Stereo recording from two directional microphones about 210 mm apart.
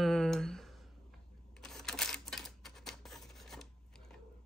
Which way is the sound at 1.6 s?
Centre (ahead or behind).